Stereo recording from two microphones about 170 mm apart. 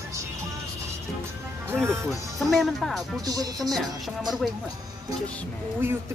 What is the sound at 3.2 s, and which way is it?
Speech, 20° right (ahead or behind).